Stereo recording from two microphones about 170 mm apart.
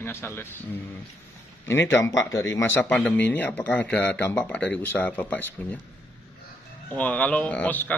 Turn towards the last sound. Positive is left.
turn(degrees=10)  # may be behind; listen again after turning